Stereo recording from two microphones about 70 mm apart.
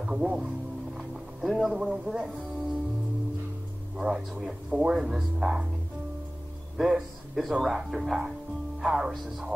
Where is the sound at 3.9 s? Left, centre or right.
Centre.